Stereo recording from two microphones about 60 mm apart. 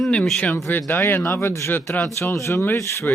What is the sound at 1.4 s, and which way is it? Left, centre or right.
Speech, left.